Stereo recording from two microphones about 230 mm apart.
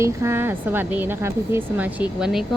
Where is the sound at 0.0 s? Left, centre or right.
Centre.